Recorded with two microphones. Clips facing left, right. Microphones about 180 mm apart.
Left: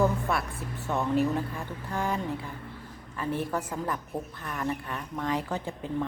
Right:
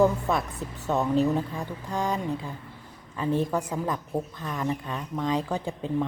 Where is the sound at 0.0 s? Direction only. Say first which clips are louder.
Right 4 dB; 20° right (ahead or behind).